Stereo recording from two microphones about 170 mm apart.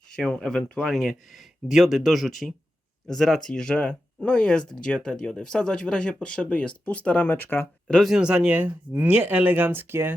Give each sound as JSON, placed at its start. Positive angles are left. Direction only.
{"t": 0.2, "sound": "speech", "side_deg": 5}